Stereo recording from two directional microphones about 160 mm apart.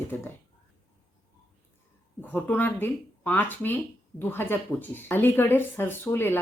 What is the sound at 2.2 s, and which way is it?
Speech, 10° left (ahead or behind).